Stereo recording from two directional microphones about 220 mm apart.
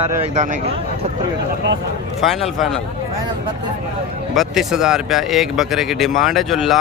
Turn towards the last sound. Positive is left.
turn(degrees=0)  # may be behind; listen again after turning